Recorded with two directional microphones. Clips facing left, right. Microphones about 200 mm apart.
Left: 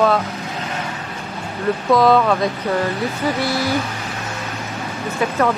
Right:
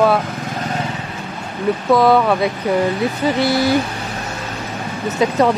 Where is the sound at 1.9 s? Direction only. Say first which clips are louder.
Right 1 dB; centre (ahead or behind).